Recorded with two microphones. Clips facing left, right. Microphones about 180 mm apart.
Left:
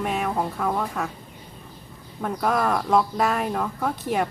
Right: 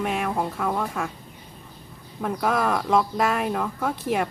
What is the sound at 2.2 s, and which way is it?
Speech, centre (ahead or behind).